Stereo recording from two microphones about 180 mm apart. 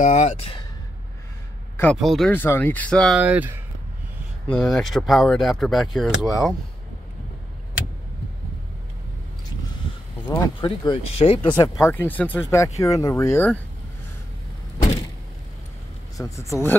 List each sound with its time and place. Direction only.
0.0 s speech: 40° left (ahead or behind)
2.0 s speech: centre (ahead or behind)
3.2 s speech: 10° right (ahead or behind)
4.5 s speech: 5° left (ahead or behind)
10.6 s speech: 30° left (ahead or behind); by 13.6 s 10° left (ahead or behind)
16.2 s speech: 15° left (ahead or behind)